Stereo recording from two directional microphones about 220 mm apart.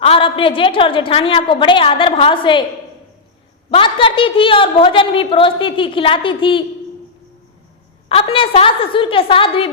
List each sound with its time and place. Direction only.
0.0 s a woman's voice: 25° left (ahead or behind)
3.7 s a woman's voice: 25° left (ahead or behind)
8.1 s a woman's voice: 25° left (ahead or behind)